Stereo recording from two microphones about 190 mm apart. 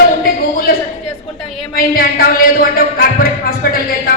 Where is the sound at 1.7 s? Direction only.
50° left (ahead or behind).